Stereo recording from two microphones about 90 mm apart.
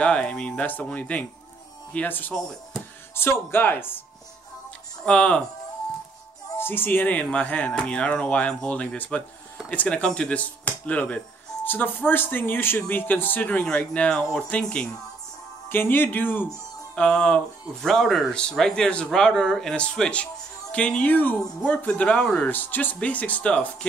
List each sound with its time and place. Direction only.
0.0 s speech: 10° left (ahead or behind)
5.0 s speech: 10° left (ahead or behind)
6.6 s speech: 25° left (ahead or behind)
16.9 s speech: 10° left (ahead or behind)